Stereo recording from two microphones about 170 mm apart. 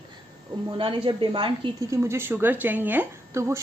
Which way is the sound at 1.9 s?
15° right (ahead or behind).